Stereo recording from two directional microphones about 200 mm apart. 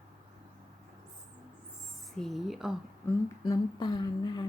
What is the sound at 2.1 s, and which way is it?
Speech, centre (ahead or behind).